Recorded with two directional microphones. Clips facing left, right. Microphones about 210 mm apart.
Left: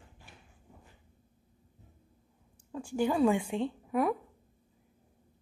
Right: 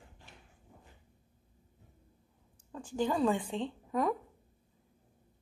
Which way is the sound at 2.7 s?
10° left (ahead or behind).